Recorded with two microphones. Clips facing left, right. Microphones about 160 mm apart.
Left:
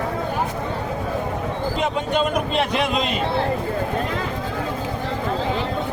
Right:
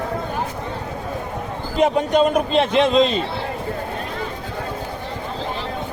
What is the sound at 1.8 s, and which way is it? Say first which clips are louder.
A man's voice: right 7 dB; 40° right (ahead or behind).